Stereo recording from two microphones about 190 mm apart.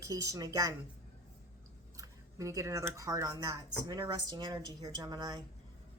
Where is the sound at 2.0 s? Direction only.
15° right (ahead or behind).